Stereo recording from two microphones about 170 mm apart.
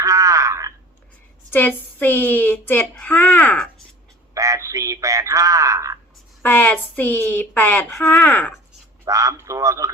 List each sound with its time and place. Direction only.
0.0 s a sound: 20° right (ahead or behind)
1.5 s speech: 10° left (ahead or behind)
4.4 s a man's voice: 20° right (ahead or behind)
6.4 s speech: 10° left (ahead or behind)
9.0 s speech: 20° right (ahead or behind)